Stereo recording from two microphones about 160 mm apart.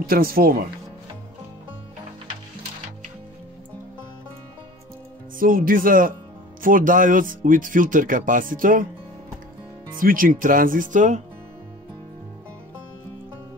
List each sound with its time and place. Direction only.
0.0 s speech: 65° right (ahead or behind)
5.4 s speech: 60° right (ahead or behind)
9.9 s speech: 60° right (ahead or behind)